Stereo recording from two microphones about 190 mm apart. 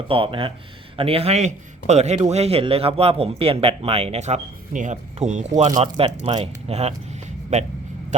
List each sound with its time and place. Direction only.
0.1 s a man's voice: 30° right (ahead or behind)